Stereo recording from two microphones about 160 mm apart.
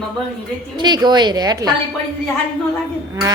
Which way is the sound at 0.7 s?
25° right (ahead or behind).